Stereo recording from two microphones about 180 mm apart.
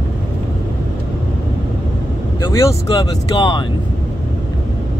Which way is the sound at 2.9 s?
20° left (ahead or behind).